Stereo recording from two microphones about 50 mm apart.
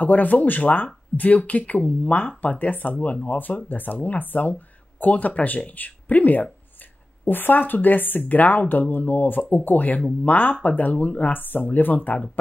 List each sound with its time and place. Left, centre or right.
0.0 s speech: left